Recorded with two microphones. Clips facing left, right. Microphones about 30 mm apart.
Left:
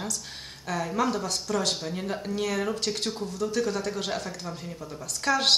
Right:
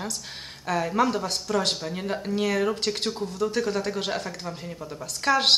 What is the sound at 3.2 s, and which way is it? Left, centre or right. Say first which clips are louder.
Speech: right 2 dB; right.